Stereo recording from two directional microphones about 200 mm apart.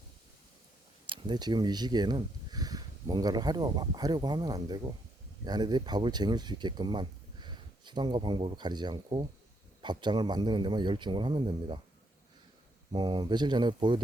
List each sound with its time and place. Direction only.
1.0 s speech: 25° right (ahead or behind)
12.9 s speech: 20° right (ahead or behind)